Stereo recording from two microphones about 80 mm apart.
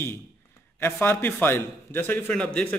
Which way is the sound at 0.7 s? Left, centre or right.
Left.